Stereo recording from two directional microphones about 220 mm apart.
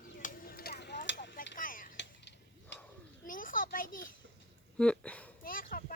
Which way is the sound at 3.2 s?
40° left (ahead or behind).